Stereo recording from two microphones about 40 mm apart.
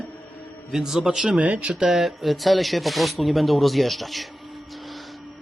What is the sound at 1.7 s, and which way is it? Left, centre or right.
Speech, centre.